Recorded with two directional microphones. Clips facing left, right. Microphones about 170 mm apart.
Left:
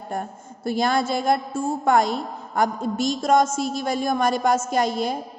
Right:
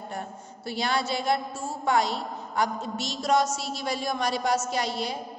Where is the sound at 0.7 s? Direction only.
45° left (ahead or behind).